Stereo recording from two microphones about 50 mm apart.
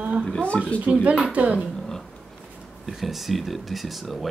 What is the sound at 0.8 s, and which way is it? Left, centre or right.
Speech, right.